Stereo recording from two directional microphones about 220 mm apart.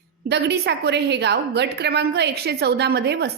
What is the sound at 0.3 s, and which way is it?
A woman's voice, 50° right (ahead or behind).